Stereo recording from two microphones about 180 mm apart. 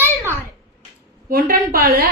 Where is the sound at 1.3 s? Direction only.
55° right (ahead or behind).